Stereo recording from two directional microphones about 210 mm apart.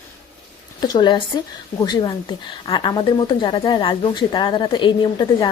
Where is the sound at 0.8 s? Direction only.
20° left (ahead or behind).